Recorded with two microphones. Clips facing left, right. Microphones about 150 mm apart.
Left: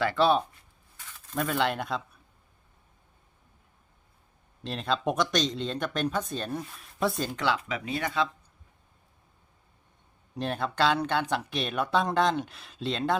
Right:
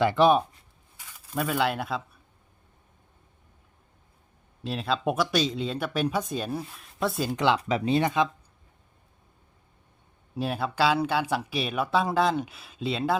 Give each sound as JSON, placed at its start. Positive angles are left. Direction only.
{"t": 0.0, "sound": "speech", "side_deg": -15}
{"t": 4.6, "sound": "speech", "side_deg": -5}
{"t": 7.3, "sound": "speech", "side_deg": -20}
{"t": 7.6, "sound": "speech", "side_deg": -30}
{"t": 10.3, "sound": "speech", "side_deg": -5}